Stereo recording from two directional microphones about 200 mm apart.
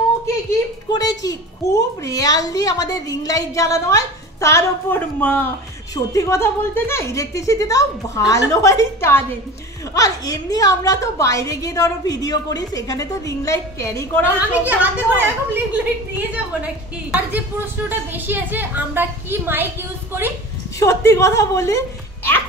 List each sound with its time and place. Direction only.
0.5 s a child's voice: 20° left (ahead or behind)
14.5 s a woman's voice: 5° right (ahead or behind)
17.8 s a woman's voice: 10° right (ahead or behind)
20.8 s a child's voice: 15° left (ahead or behind)